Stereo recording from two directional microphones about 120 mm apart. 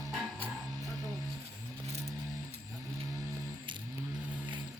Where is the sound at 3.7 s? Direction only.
40° right (ahead or behind).